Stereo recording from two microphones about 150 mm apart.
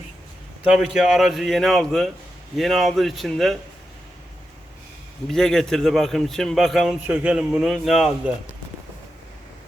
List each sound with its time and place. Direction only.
0.6 s a man's voice: 5° right (ahead or behind)
5.3 s a man's voice: 5° left (ahead or behind)